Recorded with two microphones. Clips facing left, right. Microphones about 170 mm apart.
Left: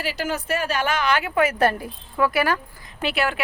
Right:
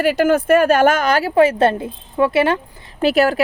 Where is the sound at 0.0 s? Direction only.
55° right (ahead or behind); by 2.6 s 25° right (ahead or behind).